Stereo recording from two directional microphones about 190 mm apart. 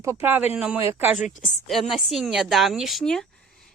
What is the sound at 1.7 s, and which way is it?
A woman's voice, centre (ahead or behind).